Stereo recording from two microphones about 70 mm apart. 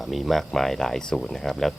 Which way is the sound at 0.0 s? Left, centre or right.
Centre.